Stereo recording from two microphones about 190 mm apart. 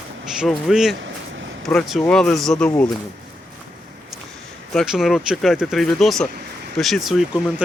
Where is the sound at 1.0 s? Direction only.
75° right (ahead or behind).